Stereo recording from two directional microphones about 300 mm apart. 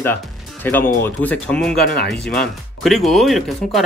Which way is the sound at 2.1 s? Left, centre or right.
Centre.